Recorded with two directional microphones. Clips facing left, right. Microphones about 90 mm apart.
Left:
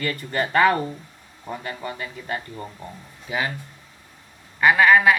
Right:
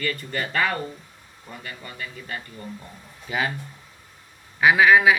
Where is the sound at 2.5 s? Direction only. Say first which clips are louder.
Left 2 dB; 30° left (ahead or behind).